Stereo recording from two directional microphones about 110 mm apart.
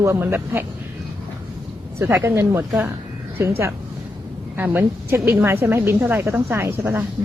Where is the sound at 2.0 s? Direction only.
20° right (ahead or behind).